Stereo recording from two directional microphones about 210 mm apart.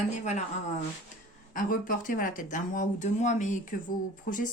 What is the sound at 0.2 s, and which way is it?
Speech, 35° left (ahead or behind).